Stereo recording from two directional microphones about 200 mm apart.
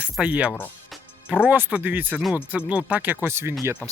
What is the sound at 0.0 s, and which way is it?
Speech, 5° right (ahead or behind).